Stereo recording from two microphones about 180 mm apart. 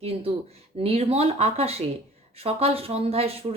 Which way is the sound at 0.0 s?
35° right (ahead or behind).